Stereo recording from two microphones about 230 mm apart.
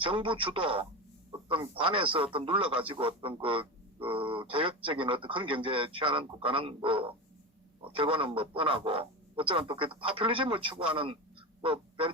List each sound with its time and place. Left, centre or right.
0.0 s a man's voice: right